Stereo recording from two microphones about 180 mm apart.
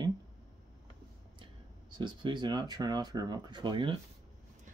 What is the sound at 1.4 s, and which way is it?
Speech, 25° right (ahead or behind).